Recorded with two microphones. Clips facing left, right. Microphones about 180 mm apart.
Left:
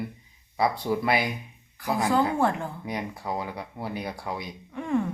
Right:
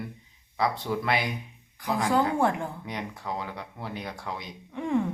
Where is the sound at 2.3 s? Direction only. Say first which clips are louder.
Even; 10° right (ahead or behind).